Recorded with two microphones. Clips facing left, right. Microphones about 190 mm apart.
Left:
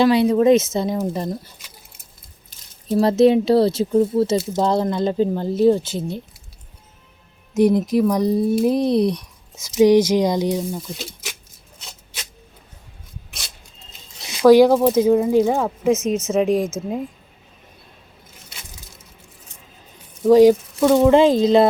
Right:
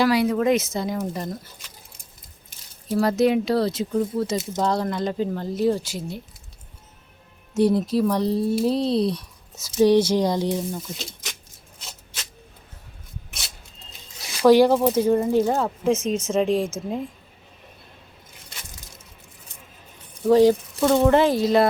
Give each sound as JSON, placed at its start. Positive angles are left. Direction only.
{"t": 0.0, "sound": "speech", "side_deg": 25}
{"t": 2.9, "sound": "speech", "side_deg": 25}
{"t": 7.5, "sound": "speech", "side_deg": 15}
{"t": 14.3, "sound": "speech", "side_deg": 10}
{"t": 16.5, "sound": "speech", "side_deg": -30}
{"t": 20.2, "sound": "speech", "side_deg": 15}
{"t": 21.1, "sound": "speech", "side_deg": 20}